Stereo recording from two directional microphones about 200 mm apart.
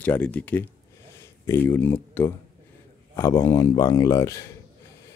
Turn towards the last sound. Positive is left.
turn(degrees=15)  # may be behind; listen again after turning